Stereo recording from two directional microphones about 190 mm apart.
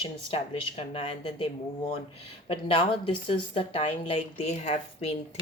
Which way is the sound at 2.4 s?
30° left (ahead or behind).